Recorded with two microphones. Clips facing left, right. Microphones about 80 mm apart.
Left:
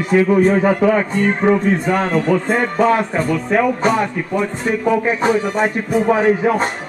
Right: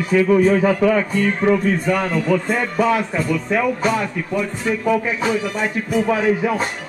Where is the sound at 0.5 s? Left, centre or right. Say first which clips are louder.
Left 2 dB; left.